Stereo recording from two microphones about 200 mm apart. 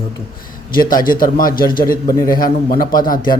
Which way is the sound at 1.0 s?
45° left (ahead or behind).